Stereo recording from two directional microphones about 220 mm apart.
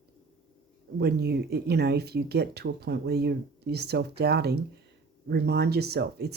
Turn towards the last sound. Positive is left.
turn(degrees=-45)  # may be behind; listen again after turning